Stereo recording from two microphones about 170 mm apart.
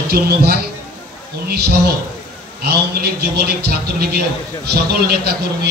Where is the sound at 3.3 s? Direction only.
60° right (ahead or behind).